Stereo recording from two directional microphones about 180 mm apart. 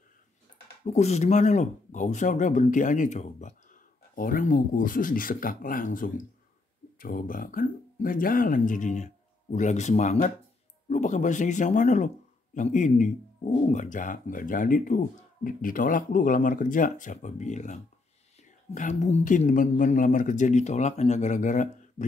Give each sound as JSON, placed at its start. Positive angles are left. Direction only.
{"t": 0.8, "sound": "speech", "side_deg": 40}